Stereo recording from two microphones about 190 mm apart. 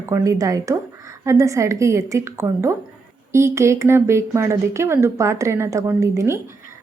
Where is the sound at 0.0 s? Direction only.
15° right (ahead or behind).